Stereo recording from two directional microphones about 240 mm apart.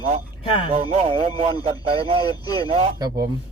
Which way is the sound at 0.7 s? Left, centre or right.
Right.